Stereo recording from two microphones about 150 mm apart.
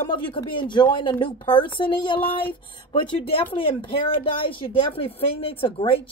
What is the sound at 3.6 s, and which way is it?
Speech, 35° left (ahead or behind).